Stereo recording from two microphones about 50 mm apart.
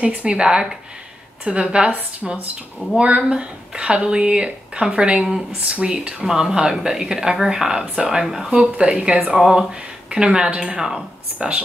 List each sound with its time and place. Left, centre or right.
0.0 s speech: right
11.3 s speech: right